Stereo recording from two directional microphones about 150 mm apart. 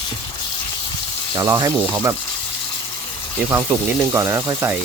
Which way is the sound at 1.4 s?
20° right (ahead or behind).